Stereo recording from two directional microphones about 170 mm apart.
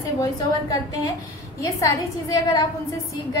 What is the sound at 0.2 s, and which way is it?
A woman's voice, 20° left (ahead or behind).